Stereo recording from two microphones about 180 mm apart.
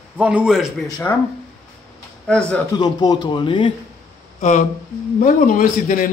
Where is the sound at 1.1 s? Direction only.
15° left (ahead or behind).